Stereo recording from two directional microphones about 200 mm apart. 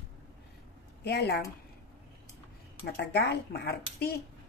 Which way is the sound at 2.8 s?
55° left (ahead or behind).